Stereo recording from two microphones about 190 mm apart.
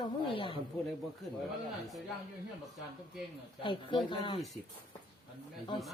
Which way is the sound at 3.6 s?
25° left (ahead or behind).